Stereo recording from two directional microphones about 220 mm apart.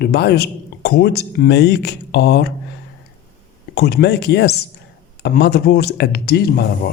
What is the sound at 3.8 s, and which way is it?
Speech, 45° left (ahead or behind).